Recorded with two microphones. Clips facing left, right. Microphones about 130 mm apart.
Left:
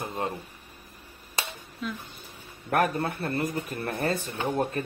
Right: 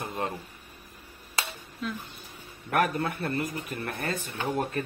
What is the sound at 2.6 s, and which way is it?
Speech, 35° left (ahead or behind).